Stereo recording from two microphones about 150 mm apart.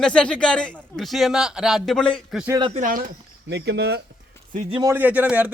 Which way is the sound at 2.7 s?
65° right (ahead or behind).